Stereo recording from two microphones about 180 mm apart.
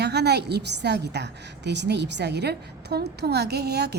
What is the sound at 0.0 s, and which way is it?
A woman's voice, 70° right (ahead or behind).